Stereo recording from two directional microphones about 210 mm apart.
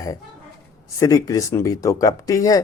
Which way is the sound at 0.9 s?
15° left (ahead or behind).